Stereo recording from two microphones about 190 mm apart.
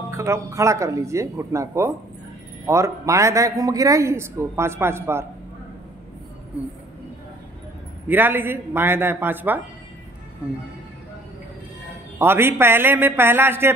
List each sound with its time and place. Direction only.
0.1 s a woman's voice: 15° right (ahead or behind)
8.1 s a woman's voice: 10° right (ahead or behind)
12.2 s a woman's voice: 10° right (ahead or behind)